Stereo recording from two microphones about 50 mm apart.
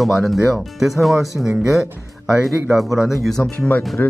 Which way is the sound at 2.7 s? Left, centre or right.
Centre.